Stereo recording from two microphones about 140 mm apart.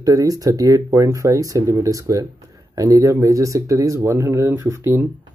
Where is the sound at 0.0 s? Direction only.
25° right (ahead or behind).